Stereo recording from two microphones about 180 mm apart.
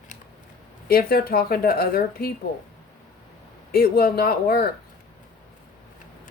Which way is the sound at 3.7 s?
55° left (ahead or behind).